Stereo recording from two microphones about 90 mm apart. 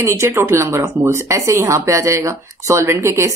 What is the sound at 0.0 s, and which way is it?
A woman's voice, 30° right (ahead or behind).